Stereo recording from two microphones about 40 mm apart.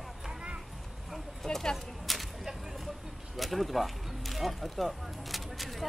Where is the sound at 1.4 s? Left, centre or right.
Centre.